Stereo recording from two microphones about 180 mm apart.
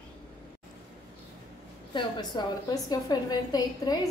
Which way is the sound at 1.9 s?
20° left (ahead or behind).